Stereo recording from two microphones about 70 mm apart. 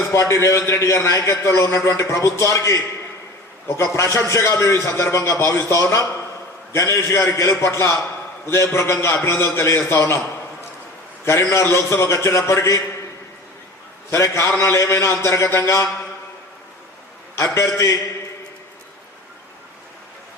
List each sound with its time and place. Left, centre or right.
0.1 s a man's voice: left
11.3 s a man's voice: left
14.1 s a man's voice: left
17.3 s a man's voice: left